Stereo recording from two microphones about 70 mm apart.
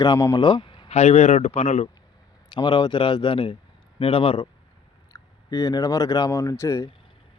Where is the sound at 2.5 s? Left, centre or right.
Left.